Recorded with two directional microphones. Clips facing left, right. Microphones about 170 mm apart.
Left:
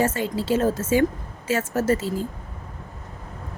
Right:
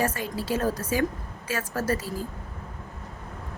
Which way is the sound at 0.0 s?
25° left (ahead or behind).